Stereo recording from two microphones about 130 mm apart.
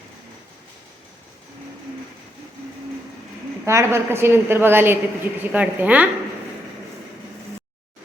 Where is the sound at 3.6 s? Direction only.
20° right (ahead or behind).